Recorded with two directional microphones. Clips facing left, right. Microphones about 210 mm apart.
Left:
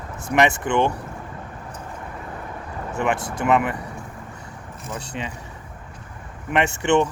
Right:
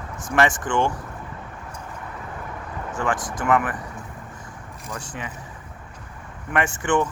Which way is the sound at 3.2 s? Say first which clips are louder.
Left 2 dB; 65° left (ahead or behind).